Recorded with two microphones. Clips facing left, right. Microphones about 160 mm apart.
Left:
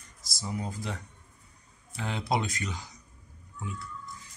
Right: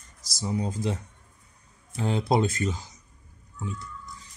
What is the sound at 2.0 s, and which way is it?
Speech, 35° right (ahead or behind).